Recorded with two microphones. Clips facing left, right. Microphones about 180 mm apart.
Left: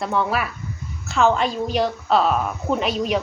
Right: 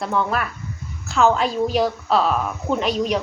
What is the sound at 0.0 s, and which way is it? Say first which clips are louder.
A woman's voice: even; centre (ahead or behind).